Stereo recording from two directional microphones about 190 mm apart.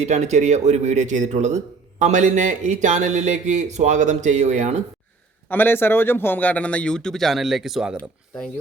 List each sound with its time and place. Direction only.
0.0 s speech: 35° right (ahead or behind)
5.5 s speech: 10° left (ahead or behind)